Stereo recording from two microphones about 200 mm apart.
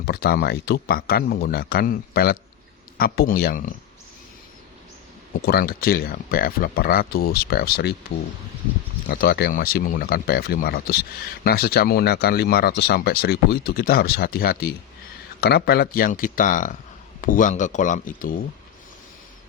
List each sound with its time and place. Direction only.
0.0 s speech: 50° left (ahead or behind)
5.4 s speech: 50° left (ahead or behind)
9.0 s speech: 55° left (ahead or behind)